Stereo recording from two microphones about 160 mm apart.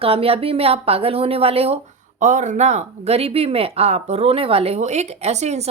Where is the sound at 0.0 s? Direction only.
35° right (ahead or behind).